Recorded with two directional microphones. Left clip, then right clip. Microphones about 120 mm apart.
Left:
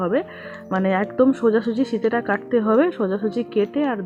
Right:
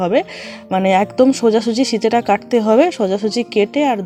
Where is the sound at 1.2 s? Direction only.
20° right (ahead or behind).